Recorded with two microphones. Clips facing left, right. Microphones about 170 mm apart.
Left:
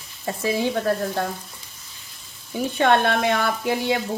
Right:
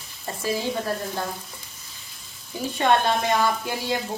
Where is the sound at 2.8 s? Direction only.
60° left (ahead or behind).